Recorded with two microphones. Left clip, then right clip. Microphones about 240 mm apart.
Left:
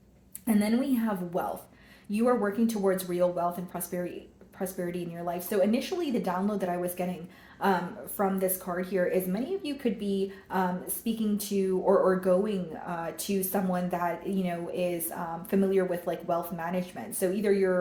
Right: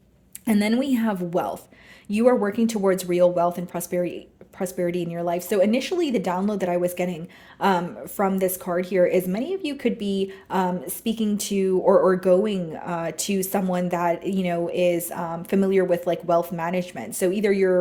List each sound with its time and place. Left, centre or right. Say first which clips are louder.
0.4 s a woman's voice: right 5 dB; right